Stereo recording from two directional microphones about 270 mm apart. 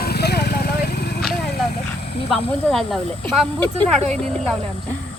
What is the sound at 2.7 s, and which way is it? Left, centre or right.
Speech, centre.